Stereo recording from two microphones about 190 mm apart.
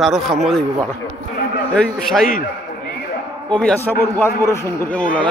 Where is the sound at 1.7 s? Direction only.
Centre (ahead or behind).